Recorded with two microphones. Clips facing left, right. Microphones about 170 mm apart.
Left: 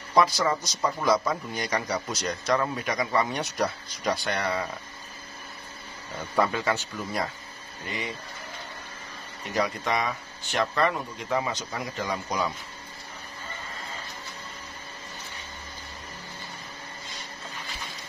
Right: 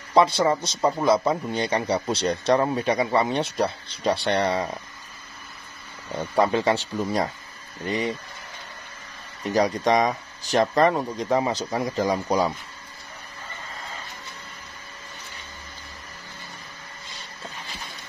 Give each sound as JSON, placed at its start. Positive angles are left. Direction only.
{"t": 0.1, "sound": "a man's voice", "side_deg": -25}
{"t": 6.3, "sound": "speech", "side_deg": -30}
{"t": 9.4, "sound": "speech", "side_deg": -35}